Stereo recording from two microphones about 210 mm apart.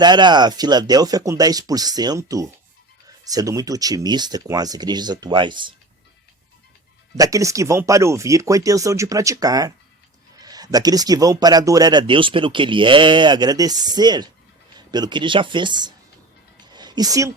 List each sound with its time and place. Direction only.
0.0 s speech: 20° right (ahead or behind)
7.2 s speech: 15° right (ahead or behind)
16.7 s a sound: 20° right (ahead or behind)